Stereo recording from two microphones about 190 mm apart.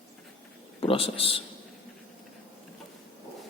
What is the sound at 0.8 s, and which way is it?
Speech, 30° left (ahead or behind).